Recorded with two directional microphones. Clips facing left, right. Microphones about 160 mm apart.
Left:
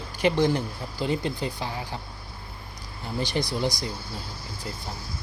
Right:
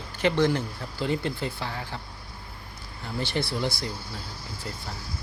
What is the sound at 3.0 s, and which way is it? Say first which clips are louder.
Speech: left 1 dB; 15° left (ahead or behind).